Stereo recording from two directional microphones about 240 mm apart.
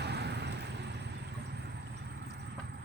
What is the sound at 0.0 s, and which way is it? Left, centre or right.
Vehicle, right.